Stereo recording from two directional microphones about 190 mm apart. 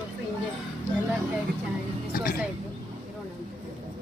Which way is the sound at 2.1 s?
50° left (ahead or behind).